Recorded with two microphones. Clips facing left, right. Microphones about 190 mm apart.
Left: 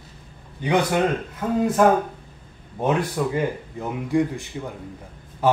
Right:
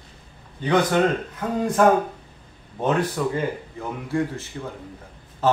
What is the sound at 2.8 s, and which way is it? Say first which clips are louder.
Speech: even; 10° left (ahead or behind).